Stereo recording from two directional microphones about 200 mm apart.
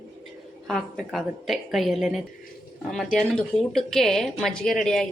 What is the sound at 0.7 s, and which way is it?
A woman's voice, centre (ahead or behind).